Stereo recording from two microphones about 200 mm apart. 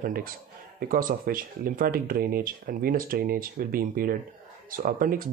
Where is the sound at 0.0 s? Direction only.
45° right (ahead or behind).